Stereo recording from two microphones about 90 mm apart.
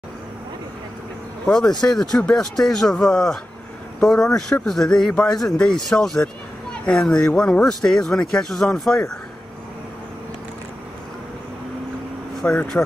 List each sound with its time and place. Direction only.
1.5 s speech: 5° left (ahead or behind)
12.4 s speech: 15° left (ahead or behind)